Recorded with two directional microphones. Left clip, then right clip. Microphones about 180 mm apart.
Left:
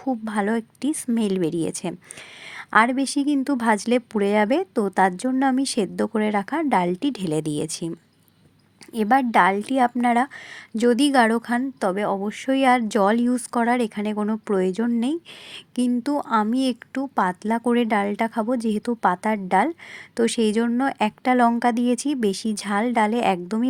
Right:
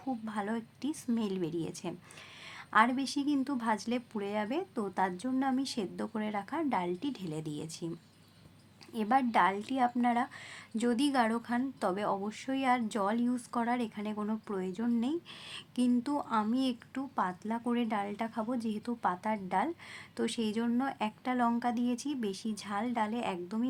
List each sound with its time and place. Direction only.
0.0 s a woman's voice: 40° left (ahead or behind)